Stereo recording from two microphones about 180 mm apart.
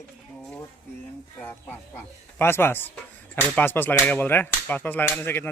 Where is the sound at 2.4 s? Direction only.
10° left (ahead or behind).